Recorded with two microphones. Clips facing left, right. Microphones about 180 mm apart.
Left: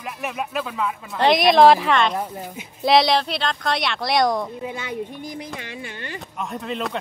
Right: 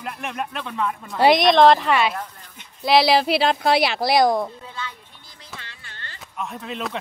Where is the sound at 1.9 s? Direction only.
10° right (ahead or behind).